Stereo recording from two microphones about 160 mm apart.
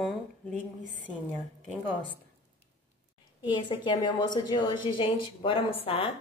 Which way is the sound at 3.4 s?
30° left (ahead or behind).